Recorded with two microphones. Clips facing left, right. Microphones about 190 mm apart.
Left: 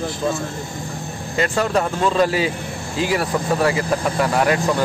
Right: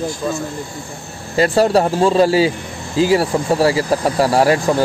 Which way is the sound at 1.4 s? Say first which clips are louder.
Right 6 dB; 35° right (ahead or behind).